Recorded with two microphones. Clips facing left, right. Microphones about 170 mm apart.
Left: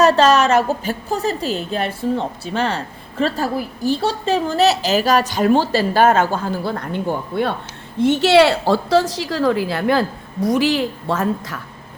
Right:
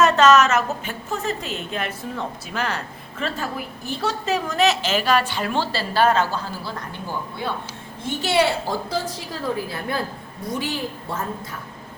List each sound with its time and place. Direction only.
0.0 s a woman's voice: 35° left (ahead or behind); by 11.6 s 90° left